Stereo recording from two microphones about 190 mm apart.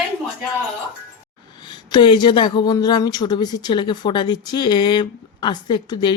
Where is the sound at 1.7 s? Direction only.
25° left (ahead or behind).